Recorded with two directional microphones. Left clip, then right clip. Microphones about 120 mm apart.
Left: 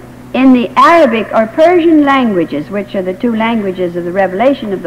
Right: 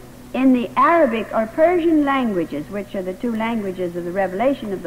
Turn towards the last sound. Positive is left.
turn(degrees=-25)  # may be behind; listen again after turning